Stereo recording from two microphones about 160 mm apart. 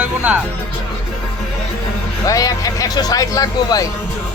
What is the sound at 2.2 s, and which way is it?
Speech, 20° left (ahead or behind).